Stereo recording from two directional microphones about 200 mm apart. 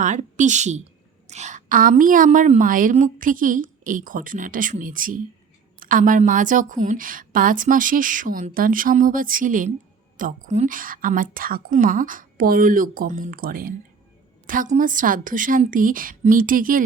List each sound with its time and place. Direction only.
0.0 s a woman's voice: 40° right (ahead or behind)